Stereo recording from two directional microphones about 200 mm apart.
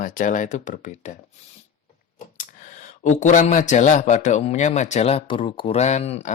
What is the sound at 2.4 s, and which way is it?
Speech, 35° left (ahead or behind).